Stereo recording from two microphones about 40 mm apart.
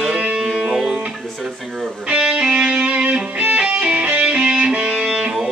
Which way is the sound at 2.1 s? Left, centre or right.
Centre.